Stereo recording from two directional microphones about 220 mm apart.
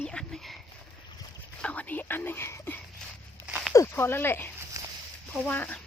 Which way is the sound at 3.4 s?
5° right (ahead or behind).